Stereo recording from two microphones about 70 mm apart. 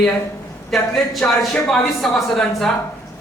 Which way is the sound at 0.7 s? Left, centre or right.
Centre.